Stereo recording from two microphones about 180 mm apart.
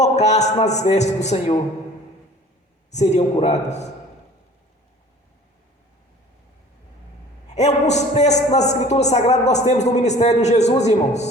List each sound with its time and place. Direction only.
0.0 s a man's voice: 40° left (ahead or behind)
2.9 s a man's voice: 40° left (ahead or behind)
7.5 s a man's voice: 40° left (ahead or behind)